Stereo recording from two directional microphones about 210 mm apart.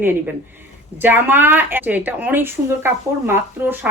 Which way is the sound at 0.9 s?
10° right (ahead or behind).